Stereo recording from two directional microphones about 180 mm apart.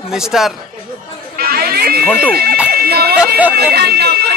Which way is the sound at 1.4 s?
55° right (ahead or behind).